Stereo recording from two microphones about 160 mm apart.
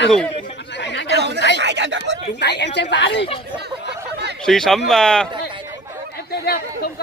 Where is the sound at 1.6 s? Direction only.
90° right.